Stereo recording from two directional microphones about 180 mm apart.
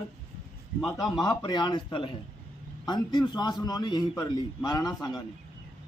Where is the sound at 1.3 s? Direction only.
25° left (ahead or behind).